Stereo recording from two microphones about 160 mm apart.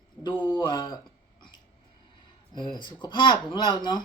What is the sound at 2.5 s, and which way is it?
Speech, 30° left (ahead or behind).